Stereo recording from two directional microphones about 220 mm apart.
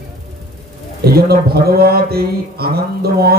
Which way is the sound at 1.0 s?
45° right (ahead or behind).